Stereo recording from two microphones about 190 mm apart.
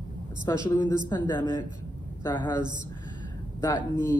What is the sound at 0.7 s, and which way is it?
Speech, 20° left (ahead or behind).